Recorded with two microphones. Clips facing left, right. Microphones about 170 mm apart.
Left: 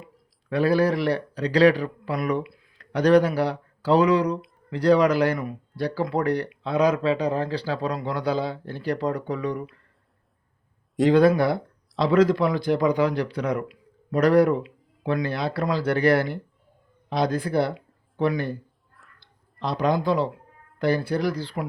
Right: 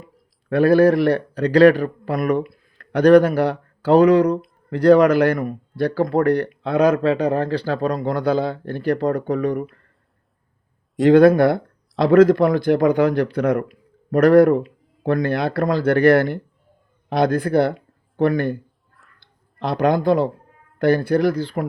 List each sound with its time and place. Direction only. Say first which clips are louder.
0.5 s speech: right 7 dB; 55° right (ahead or behind)
11.1 s speech: right 7 dB; 55° right (ahead or behind)